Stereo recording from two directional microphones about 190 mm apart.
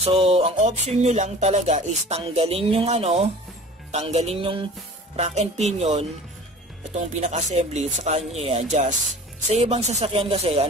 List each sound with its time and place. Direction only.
0.0 s music: 30° right (ahead or behind)